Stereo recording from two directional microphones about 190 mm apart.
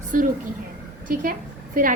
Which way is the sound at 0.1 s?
45° right (ahead or behind).